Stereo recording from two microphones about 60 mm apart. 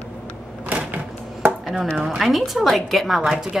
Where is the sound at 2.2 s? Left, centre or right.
Centre.